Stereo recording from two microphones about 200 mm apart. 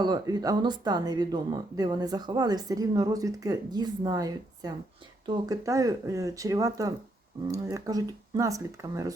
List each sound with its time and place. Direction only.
0.0 s speech: 20° right (ahead or behind)